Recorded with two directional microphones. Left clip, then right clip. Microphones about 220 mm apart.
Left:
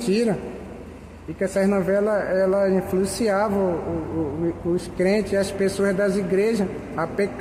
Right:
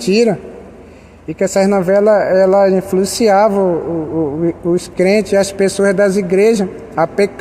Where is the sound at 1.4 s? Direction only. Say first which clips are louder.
Right 9 dB; 35° right (ahead or behind).